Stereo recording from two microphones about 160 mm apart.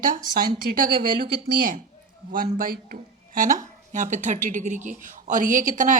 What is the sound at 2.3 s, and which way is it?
Speech, 60° right (ahead or behind).